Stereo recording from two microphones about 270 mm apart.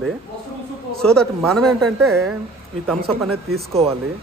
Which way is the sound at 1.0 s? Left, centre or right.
Centre.